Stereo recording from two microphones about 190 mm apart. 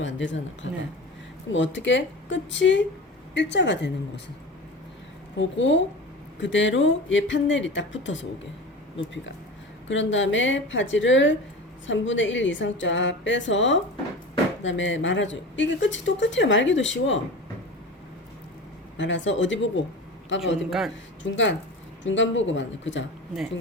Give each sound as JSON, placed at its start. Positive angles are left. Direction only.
{"t": 0.0, "sound": "a woman's voice", "side_deg": 75}
{"t": 5.4, "sound": "a woman's voice", "side_deg": 75}
{"t": 9.9, "sound": "a woman's voice", "side_deg": 80}
{"t": 18.9, "sound": "a woman's voice", "side_deg": 75}
{"t": 20.7, "sound": "a man's voice", "side_deg": 0}
{"t": 21.2, "sound": "a woman's voice", "side_deg": 75}